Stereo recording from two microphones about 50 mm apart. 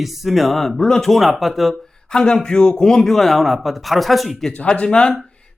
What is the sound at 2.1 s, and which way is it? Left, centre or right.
A man's voice, centre.